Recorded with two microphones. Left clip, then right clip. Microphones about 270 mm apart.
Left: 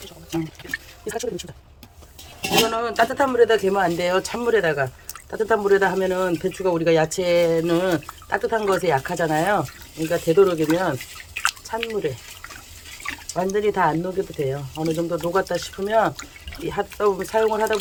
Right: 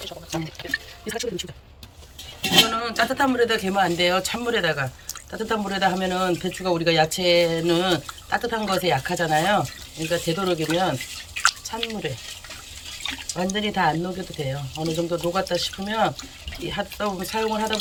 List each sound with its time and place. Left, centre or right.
1.0 s speech: left
2.5 s speech: left
11.4 s drip: left
13.3 s speech: centre